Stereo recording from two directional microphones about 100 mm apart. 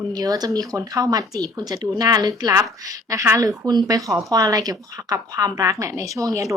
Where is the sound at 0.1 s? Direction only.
40° right (ahead or behind).